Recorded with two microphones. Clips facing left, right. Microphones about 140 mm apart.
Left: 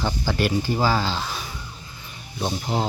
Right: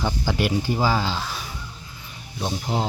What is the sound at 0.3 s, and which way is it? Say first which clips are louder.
Speech: left 1 dB; 15° right (ahead or behind).